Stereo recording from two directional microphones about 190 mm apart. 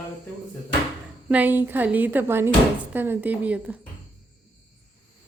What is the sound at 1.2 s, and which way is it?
A woman's voice, 10° right (ahead or behind).